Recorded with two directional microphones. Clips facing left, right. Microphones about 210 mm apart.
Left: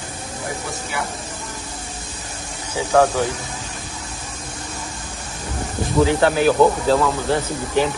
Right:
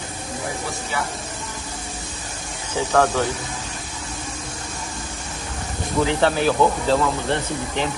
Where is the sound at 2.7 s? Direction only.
10° left (ahead or behind).